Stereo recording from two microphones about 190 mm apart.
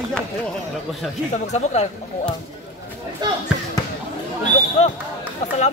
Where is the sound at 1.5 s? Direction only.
35° left (ahead or behind).